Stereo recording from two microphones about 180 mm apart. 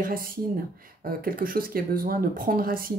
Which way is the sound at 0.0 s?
50° right (ahead or behind).